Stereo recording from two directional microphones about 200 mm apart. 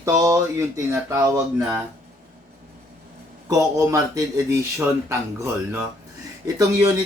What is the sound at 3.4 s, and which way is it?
Speech, 15° right (ahead or behind).